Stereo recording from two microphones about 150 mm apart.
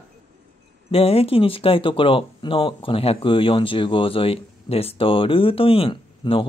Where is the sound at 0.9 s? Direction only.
40° left (ahead or behind).